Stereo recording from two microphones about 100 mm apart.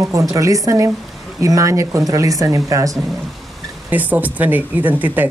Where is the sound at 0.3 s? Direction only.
35° right (ahead or behind).